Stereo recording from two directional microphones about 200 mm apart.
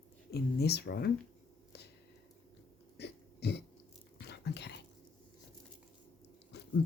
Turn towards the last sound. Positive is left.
turn(degrees=60)  # may be behind; listen again after turning